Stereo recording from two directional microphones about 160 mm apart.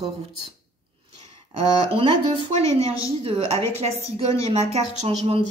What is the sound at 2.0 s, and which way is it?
A woman's voice, 40° right (ahead or behind).